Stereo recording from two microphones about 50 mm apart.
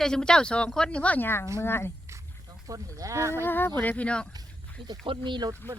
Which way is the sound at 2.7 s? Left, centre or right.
Right.